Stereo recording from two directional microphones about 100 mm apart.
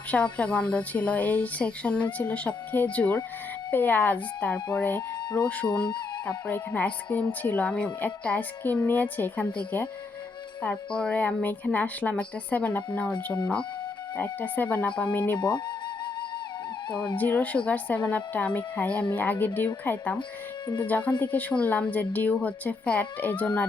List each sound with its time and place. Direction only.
0.1 s a woman's voice: 10° left (ahead or behind)
10.6 s a woman's voice: 10° left (ahead or behind)
15.4 s speech: 45° left (ahead or behind)
17.2 s a woman's voice: 15° left (ahead or behind)